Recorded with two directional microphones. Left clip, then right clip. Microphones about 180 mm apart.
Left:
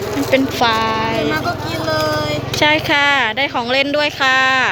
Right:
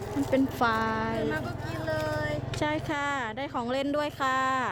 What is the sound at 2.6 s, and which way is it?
Speech, 20° right (ahead or behind).